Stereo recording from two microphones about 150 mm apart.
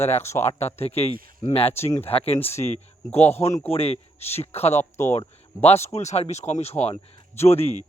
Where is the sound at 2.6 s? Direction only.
45° left (ahead or behind).